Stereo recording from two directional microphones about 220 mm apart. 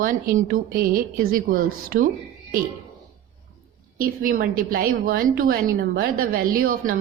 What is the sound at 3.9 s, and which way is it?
Speech, 40° right (ahead or behind).